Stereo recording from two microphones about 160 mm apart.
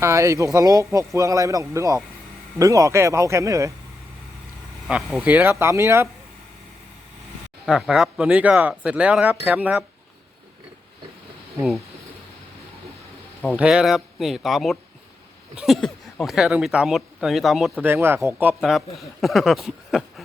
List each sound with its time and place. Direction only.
0.0 s speech: 20° right (ahead or behind)
4.9 s speech: 5° right (ahead or behind)
7.6 s speech: 5° right (ahead or behind)
13.4 s speech: centre (ahead or behind)
17.8 s speech: 15° right (ahead or behind)
18.7 s speech: centre (ahead or behind)